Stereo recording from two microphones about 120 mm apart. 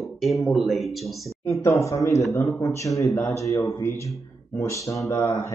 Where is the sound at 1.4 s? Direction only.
25° left (ahead or behind).